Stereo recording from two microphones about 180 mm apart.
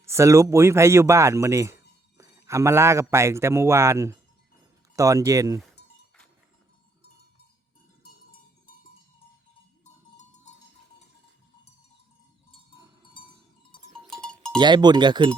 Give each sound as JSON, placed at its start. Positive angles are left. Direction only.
{"t": 0.0, "sound": "speech", "side_deg": -15}
{"t": 9.8, "sound": "cowbell", "side_deg": 40}
{"t": 14.2, "sound": "cowbell", "side_deg": 5}
{"t": 14.6, "sound": "speech", "side_deg": -25}